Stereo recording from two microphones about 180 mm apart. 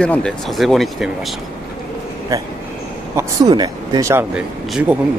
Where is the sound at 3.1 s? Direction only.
20° right (ahead or behind).